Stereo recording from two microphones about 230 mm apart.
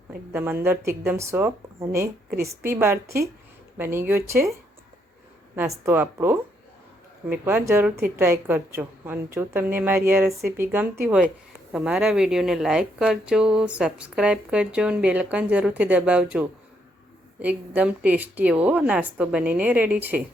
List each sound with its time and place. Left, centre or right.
0.3 s a woman's voice: centre
5.5 s a woman's voice: centre